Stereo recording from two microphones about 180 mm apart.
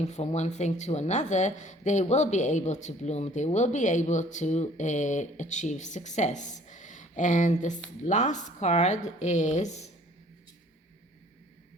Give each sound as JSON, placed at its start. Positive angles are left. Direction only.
{"t": 0.0, "sound": "speech", "side_deg": 40}